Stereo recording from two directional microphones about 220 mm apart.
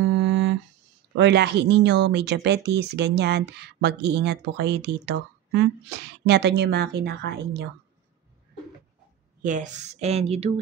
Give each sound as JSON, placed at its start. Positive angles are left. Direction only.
{"t": 0.0, "sound": "music", "side_deg": -55}
{"t": 1.1, "sound": "speech", "side_deg": -50}
{"t": 9.4, "sound": "speech", "side_deg": -35}